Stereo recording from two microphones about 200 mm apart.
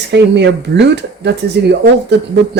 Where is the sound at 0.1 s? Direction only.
60° right (ahead or behind).